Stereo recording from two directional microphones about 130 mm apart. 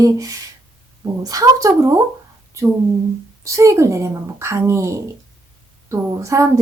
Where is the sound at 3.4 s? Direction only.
25° right (ahead or behind).